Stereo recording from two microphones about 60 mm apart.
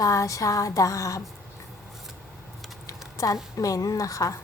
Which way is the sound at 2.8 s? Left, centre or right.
Left.